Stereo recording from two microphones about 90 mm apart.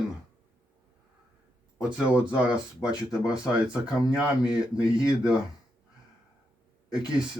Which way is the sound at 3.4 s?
45° left (ahead or behind).